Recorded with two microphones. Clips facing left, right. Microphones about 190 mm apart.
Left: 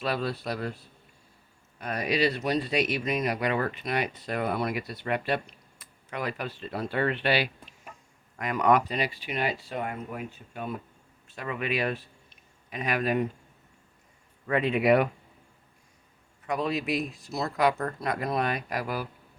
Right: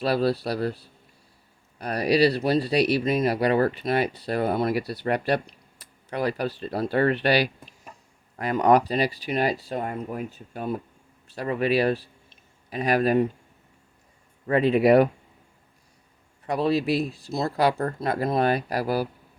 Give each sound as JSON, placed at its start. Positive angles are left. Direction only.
{"t": 0.0, "sound": "speech", "side_deg": -35}
{"t": 1.8, "sound": "speech", "side_deg": -35}
{"t": 14.4, "sound": "speech", "side_deg": -35}
{"t": 16.5, "sound": "speech", "side_deg": -35}